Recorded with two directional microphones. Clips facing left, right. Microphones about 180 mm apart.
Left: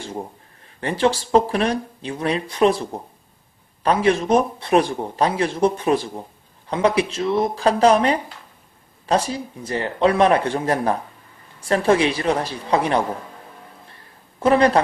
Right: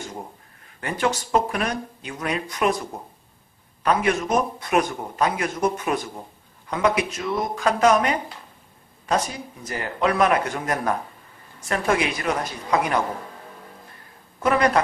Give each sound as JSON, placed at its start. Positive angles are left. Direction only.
{"t": 0.7, "sound": "speech", "side_deg": 30}
{"t": 14.4, "sound": "speech", "side_deg": 30}